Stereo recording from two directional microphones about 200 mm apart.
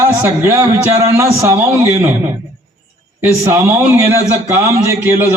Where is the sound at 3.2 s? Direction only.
10° right (ahead or behind).